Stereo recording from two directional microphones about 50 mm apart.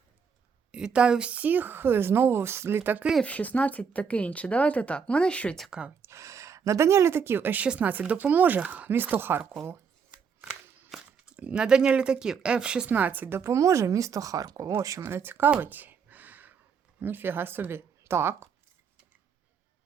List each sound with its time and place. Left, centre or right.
0.7 s a woman's voice: centre; by 3.0 s right
3.2 s speech: left
6.0 s speech: right
7.8 s a woman's voice: right
8.9 s speech: right
10.9 s walk: centre
11.3 s speech: right
12.9 s a woman's voice: right
13.3 s a woman's voice: right
15.0 s speech: right
15.6 s gasp: right
17.0 s speech: right